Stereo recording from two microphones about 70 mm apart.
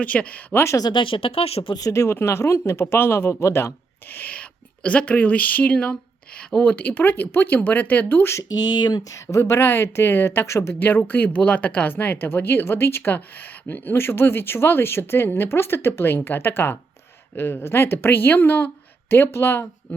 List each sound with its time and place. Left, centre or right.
0.0 s speech: centre
0.5 s speech: left
1.9 s speech: left
4.1 s speech: left
8.4 s speech: left
9.0 s speech: left